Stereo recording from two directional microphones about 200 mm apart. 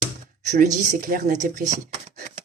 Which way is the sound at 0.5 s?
40° right (ahead or behind).